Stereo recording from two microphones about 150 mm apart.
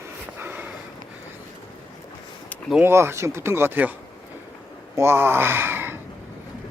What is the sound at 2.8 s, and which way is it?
Speech, 15° right (ahead or behind).